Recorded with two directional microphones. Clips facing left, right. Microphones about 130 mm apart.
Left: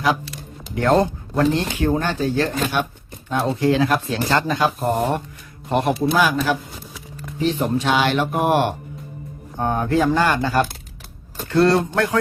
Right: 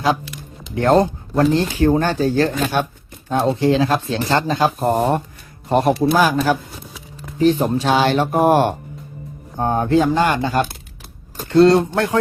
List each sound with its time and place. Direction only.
0.8 s speech: 30° right (ahead or behind)
9.6 s speech: 30° right (ahead or behind)